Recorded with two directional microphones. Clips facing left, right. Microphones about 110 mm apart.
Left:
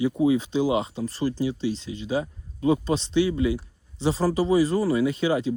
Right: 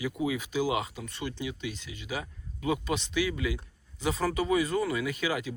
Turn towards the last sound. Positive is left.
turn(degrees=30)  # may be behind; listen again after turning